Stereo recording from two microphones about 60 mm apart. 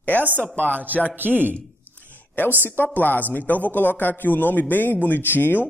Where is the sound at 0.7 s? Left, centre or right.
Right.